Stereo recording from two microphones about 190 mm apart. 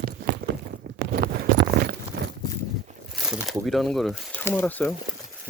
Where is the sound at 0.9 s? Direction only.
60° right (ahead or behind).